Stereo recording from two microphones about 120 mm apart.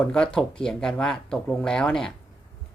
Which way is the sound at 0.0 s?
5° left (ahead or behind).